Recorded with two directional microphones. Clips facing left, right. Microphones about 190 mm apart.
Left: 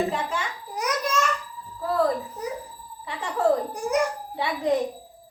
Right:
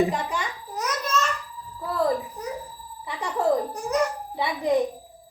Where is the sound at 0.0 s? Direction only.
15° right (ahead or behind).